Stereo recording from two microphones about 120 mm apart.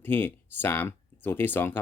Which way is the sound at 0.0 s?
15° left (ahead or behind).